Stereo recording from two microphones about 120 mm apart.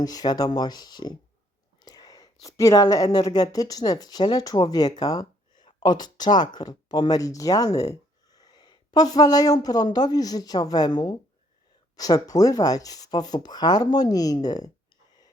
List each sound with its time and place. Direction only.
0.0 s speech: 35° left (ahead or behind)